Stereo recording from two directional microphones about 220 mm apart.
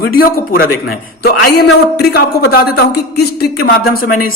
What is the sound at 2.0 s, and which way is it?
A man's voice, 45° left (ahead or behind).